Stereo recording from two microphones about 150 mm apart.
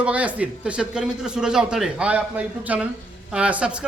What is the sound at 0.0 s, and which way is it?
Speech, 10° right (ahead or behind).